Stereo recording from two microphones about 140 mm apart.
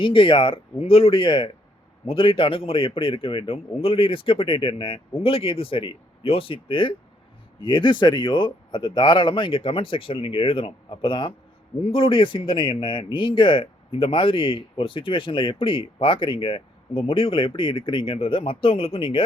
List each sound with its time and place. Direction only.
0.0 s speech: 40° left (ahead or behind)